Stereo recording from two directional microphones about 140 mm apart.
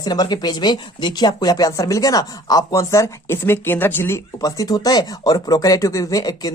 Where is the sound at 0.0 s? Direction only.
30° left (ahead or behind).